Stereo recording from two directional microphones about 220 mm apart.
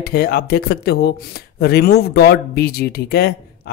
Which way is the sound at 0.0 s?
45° left (ahead or behind).